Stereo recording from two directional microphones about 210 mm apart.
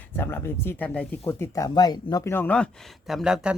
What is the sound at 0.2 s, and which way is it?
A woman's voice, 10° left (ahead or behind).